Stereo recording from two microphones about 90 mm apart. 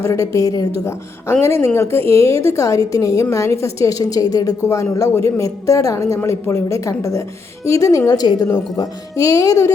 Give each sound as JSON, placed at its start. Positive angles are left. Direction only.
{"t": 0.0, "sound": "a woman's voice", "side_deg": 40}
{"t": 0.9, "sound": "a woman's voice", "side_deg": 30}
{"t": 8.4, "sound": "a woman's voice", "side_deg": 35}